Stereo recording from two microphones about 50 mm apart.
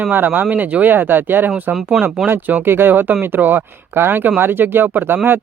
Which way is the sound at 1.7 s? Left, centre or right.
Centre.